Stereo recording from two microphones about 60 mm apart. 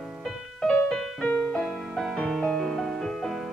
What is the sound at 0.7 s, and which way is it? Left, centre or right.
Music, centre.